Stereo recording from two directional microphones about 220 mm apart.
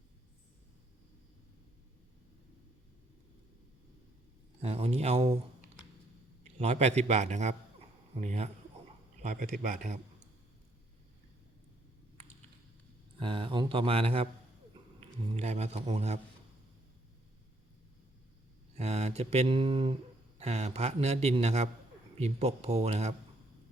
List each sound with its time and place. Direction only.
4.6 s a man's voice: 30° right (ahead or behind)
6.4 s a man's voice: 30° right (ahead or behind)
13.1 s a man's voice: 25° right (ahead or behind)
18.8 s a man's voice: 30° right (ahead or behind)